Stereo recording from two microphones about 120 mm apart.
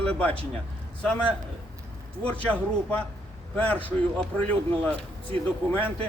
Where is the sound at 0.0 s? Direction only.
10° left (ahead or behind).